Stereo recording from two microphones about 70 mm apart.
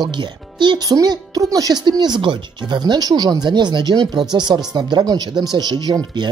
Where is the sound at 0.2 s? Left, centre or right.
Right.